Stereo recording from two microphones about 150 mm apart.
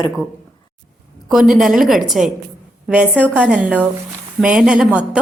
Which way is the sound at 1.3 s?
Centre (ahead or behind).